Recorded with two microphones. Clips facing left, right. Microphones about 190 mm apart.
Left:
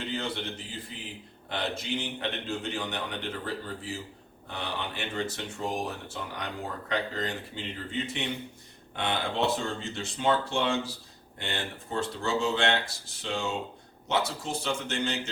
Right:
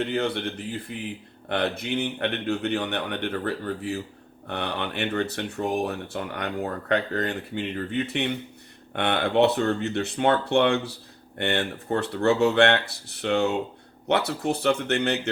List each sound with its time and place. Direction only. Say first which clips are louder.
0.0 s speech: right 7 dB; 60° right (ahead or behind)